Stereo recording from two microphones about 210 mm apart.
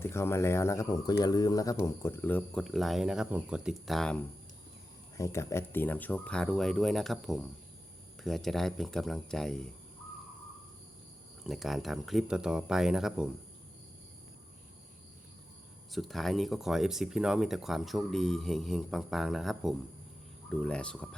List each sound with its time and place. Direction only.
0.0 s speech: 10° left (ahead or behind)
5.1 s speech: 15° left (ahead or behind)
11.4 s speech: centre (ahead or behind)
15.9 s speech: centre (ahead or behind)